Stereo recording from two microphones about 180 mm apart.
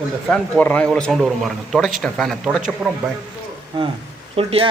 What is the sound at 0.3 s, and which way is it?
Speech, 5° left (ahead or behind).